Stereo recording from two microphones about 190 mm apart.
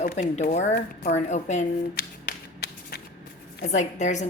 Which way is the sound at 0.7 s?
55° left (ahead or behind).